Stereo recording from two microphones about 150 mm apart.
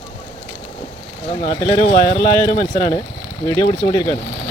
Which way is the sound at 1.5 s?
25° left (ahead or behind).